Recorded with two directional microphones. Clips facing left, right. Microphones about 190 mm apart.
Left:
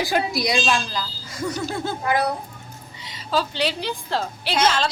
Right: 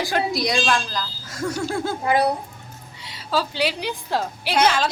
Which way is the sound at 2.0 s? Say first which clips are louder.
Right 2 dB; 25° right (ahead or behind).